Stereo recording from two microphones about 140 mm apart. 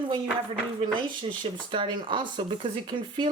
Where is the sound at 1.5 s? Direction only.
35° right (ahead or behind).